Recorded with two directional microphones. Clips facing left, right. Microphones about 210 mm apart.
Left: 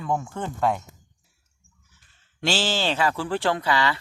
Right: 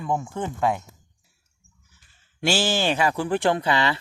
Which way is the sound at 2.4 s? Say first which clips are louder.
Right 2 dB; 10° right (ahead or behind).